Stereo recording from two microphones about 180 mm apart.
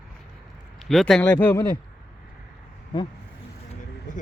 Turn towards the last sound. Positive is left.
turn(degrees=45)  # may be behind; listen again after turning